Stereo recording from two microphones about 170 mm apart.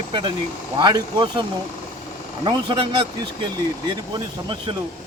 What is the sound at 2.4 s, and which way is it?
A man's voice, 25° right (ahead or behind).